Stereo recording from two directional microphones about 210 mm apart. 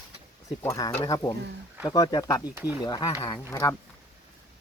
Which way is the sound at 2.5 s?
5° right (ahead or behind).